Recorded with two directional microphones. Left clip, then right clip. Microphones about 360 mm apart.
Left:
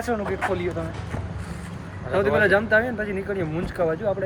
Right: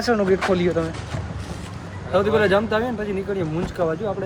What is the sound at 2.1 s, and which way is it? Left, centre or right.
Speech, centre.